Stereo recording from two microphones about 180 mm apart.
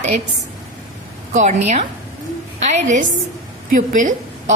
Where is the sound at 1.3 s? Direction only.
40° right (ahead or behind).